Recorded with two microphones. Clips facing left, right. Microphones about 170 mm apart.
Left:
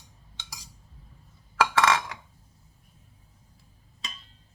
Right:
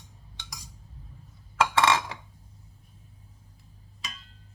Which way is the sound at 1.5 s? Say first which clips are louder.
Even; 25° right (ahead or behind).